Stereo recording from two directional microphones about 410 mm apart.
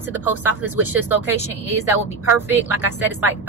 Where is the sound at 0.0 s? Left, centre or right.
Centre.